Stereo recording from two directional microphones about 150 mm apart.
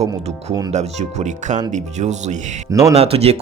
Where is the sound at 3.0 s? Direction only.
45° right (ahead or behind).